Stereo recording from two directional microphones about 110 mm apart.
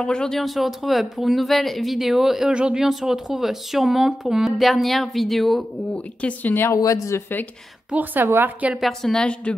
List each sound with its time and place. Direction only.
0.0 s speech: 5° left (ahead or behind)
6.2 s a woman's voice: 15° left (ahead or behind)
6.8 s speech: 30° left (ahead or behind)
7.9 s a woman's voice: 15° right (ahead or behind)
8.8 s a woman's voice: 5° left (ahead or behind)